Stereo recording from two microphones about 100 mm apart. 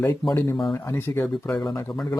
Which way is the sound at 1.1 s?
30° left (ahead or behind).